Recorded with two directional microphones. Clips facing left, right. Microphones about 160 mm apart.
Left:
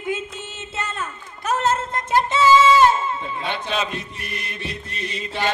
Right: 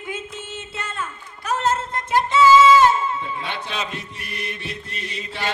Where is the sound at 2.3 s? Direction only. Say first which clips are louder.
Right 3 dB; 25° left (ahead or behind).